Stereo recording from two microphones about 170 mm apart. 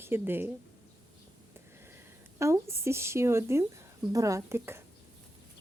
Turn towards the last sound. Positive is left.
turn(degrees=-15)  # may be behind; listen again after turning